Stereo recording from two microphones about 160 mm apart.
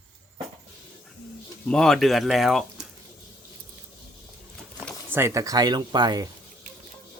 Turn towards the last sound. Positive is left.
turn(degrees=-25)  # may be behind; listen again after turning